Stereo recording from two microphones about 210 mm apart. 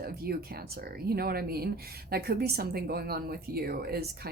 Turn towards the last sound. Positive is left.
turn(degrees=-50)  # may be behind; listen again after turning